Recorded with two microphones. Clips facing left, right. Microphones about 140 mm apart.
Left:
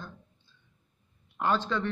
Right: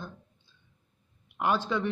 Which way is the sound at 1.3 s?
15° right (ahead or behind).